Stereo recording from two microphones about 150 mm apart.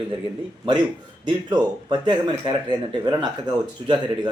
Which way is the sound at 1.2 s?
30° right (ahead or behind).